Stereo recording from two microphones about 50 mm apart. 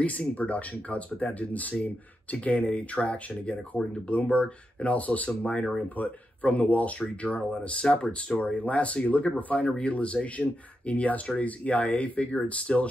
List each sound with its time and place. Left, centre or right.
0.0 s speech: left